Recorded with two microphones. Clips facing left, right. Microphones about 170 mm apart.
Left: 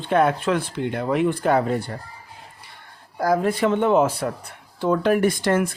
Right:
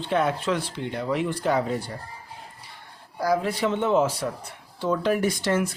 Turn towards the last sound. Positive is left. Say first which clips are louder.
# left 4 dB
turn(degrees=55)  # may be behind; listen again after turning